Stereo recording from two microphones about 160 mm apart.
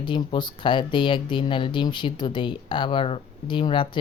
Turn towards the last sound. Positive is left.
turn(degrees=30)  # may be behind; listen again after turning